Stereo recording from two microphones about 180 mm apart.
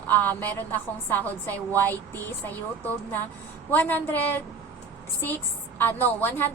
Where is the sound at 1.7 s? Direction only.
10° left (ahead or behind).